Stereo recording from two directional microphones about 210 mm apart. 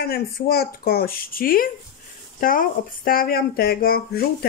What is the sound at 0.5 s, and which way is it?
A woman's voice, 45° left (ahead or behind).